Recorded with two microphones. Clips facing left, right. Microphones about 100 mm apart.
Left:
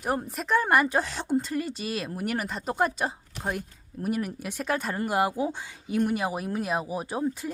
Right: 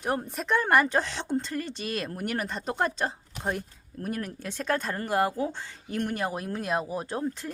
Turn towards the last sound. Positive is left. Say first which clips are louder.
# left 2 dB
turn(degrees=10)  # may be behind; listen again after turning